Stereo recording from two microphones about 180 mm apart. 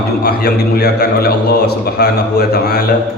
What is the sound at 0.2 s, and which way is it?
A man's voice, 60° left (ahead or behind).